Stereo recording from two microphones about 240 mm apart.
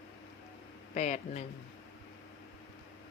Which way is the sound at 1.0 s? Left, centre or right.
Left.